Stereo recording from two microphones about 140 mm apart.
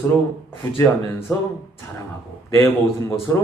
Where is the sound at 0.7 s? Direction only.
15° left (ahead or behind).